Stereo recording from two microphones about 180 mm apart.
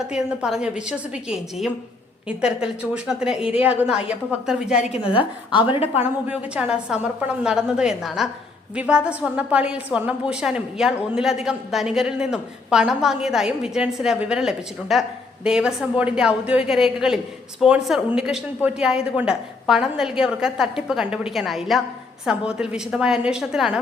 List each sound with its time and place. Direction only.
0.0 s a woman's voice: 5° right (ahead or behind)
4.9 s a woman's voice: 30° left (ahead or behind)
6.0 s a woman's voice: 10° right (ahead or behind)